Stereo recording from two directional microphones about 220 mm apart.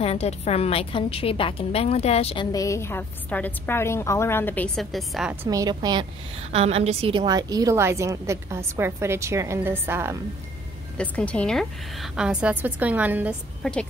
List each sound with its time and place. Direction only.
0.0 s a woman's voice: 30° left (ahead or behind)
2.5 s a woman's voice: 15° left (ahead or behind); by 10.1 s 10° right (ahead or behind)
11.0 s a woman's voice: 5° left (ahead or behind)
13.6 s a woman's voice: 5° left (ahead or behind)